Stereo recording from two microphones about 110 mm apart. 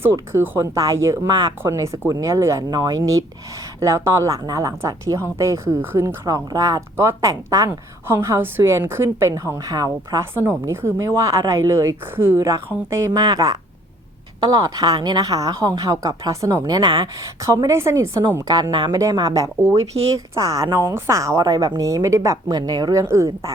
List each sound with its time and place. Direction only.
0.0 s a woman's voice: 20° right (ahead or behind)
6.2 s a woman's voice: 35° right (ahead or behind)
13.1 s speech: 35° right (ahead or behind)
18.4 s a woman's voice: 40° right (ahead or behind)